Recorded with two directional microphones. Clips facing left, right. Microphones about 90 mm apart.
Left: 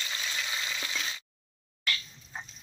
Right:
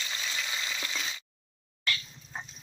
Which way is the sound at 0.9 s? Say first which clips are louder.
Even; 5° right (ahead or behind).